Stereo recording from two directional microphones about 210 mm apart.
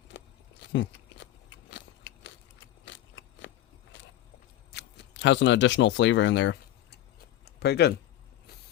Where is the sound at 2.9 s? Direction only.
60° left (ahead or behind).